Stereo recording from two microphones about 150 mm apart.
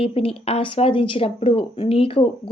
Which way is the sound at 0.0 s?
40° left (ahead or behind).